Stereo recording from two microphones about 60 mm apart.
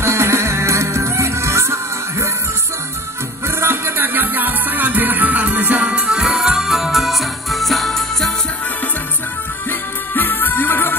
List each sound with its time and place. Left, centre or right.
0.0 s music: right
3.4 s music: right; by 8.3 s centre
9.7 s music: left